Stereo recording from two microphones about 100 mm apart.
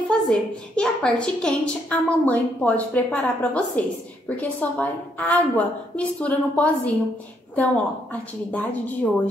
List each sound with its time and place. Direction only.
0.1 s a woman's voice: 10° left (ahead or behind)